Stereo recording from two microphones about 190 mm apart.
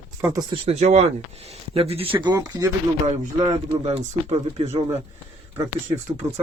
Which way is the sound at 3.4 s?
35° right (ahead or behind).